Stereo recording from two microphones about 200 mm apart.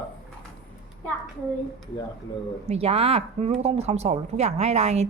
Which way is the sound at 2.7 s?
30° right (ahead or behind).